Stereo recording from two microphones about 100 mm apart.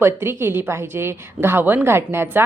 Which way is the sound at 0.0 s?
25° right (ahead or behind).